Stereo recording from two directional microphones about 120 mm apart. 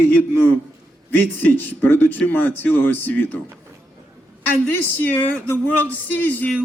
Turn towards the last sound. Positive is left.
turn(degrees=15)  # may be behind; listen again after turning